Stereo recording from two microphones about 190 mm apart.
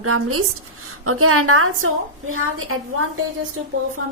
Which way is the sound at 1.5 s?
90° right.